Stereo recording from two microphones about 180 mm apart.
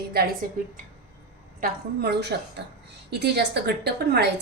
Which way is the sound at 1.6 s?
60° right (ahead or behind).